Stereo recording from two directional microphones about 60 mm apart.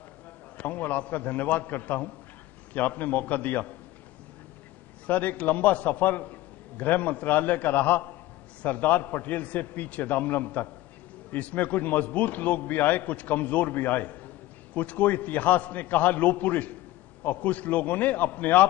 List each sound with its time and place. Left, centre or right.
0.6 s a man's voice: left
5.0 s a man's voice: left